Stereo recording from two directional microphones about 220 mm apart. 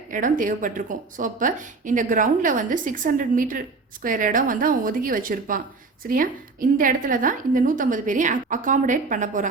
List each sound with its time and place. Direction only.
0.1 s a woman's voice: 35° right (ahead or behind)